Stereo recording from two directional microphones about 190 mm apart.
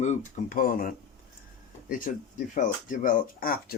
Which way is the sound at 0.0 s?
40° left (ahead or behind).